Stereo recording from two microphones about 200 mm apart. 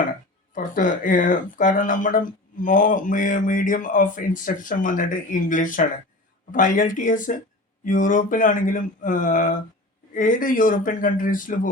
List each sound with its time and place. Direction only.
0.5 s speech: 40° left (ahead or behind)